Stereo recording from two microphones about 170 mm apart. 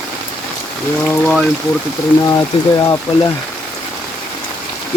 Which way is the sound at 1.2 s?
5° left (ahead or behind).